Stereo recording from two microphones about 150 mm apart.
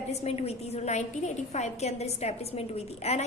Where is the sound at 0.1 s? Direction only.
45° left (ahead or behind).